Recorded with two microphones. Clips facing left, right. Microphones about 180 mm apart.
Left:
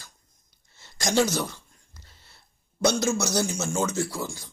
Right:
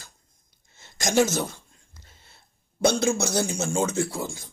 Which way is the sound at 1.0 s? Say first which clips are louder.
Right 2 dB; 20° right (ahead or behind).